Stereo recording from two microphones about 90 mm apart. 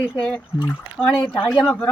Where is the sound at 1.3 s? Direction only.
10° left (ahead or behind).